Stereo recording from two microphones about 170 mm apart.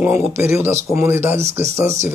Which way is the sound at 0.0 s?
10° right (ahead or behind).